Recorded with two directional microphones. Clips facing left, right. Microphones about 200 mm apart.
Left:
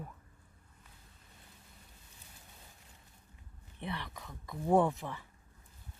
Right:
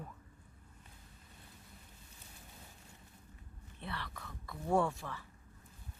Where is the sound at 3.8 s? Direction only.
20° left (ahead or behind).